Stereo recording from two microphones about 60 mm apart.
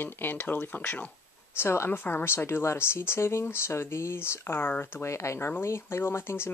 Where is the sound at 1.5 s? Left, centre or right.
Left.